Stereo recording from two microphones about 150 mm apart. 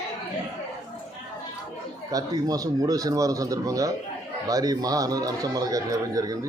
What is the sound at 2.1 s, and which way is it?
Speech, 25° right (ahead or behind).